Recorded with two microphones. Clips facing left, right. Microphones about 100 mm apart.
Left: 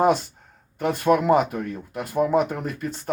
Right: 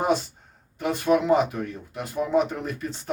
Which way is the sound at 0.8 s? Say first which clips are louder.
Left 2 dB; 50° left (ahead or behind).